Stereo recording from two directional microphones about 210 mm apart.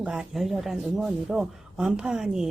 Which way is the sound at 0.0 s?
5° right (ahead or behind).